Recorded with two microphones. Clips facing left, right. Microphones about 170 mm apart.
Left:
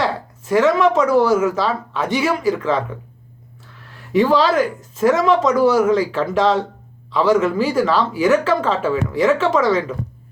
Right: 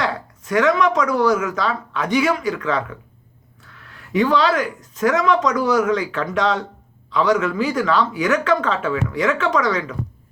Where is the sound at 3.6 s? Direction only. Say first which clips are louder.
Left 2 dB; 30° left (ahead or behind).